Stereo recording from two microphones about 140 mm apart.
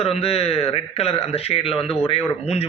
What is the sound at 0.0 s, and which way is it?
A man's voice, 45° left (ahead or behind).